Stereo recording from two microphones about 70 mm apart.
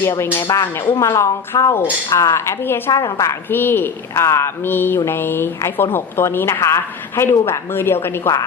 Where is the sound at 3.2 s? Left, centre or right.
Left.